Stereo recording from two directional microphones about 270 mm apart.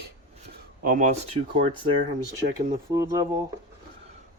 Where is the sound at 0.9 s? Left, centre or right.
Right.